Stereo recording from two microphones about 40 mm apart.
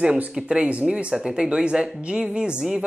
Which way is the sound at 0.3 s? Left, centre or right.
Right.